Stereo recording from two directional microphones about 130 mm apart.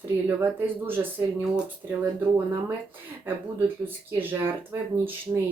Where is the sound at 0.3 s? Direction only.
15° right (ahead or behind).